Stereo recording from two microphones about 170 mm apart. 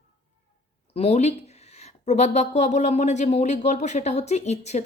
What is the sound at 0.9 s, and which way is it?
Speech, 40° left (ahead or behind).